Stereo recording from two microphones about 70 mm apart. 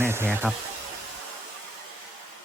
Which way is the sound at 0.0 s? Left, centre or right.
Right.